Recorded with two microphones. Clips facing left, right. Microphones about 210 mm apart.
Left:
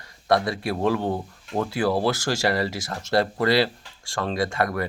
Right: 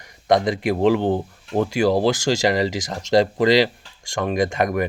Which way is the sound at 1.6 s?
15° right (ahead or behind).